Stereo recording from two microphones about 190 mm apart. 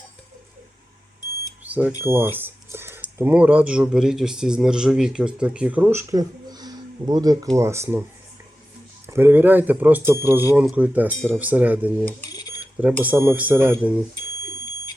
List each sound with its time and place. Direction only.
1.6 s smoke detector: 10° right (ahead or behind)
2.0 s a man's voice: 10° right (ahead or behind)
9.0 s a man's voice: 10° right (ahead or behind)
13.0 s a man's voice: 10° right (ahead or behind)